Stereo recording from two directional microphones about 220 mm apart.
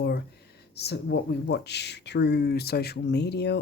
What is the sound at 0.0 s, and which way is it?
Speech, 50° left (ahead or behind).